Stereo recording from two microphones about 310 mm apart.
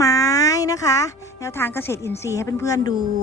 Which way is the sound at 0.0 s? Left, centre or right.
Centre.